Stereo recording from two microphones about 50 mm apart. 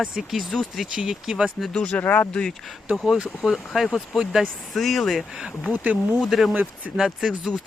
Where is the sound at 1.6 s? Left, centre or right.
Centre.